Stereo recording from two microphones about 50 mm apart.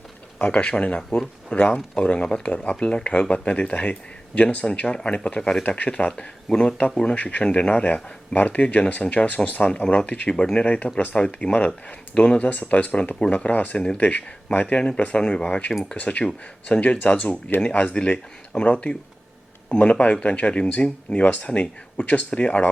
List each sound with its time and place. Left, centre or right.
0.3 s speech: left
5.6 s speech: left
6.1 s speech: centre
17.6 s speech: centre